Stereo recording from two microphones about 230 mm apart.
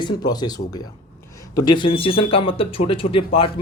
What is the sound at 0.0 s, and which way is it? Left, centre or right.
Speech, centre.